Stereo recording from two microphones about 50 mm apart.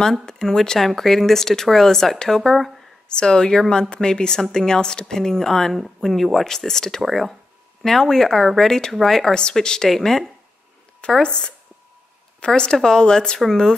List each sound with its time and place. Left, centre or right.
0.2 s a woman's voice: centre